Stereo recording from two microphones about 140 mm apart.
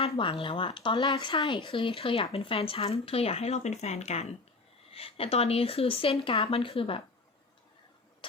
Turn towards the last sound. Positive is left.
turn(degrees=40)  # may be behind; listen again after turning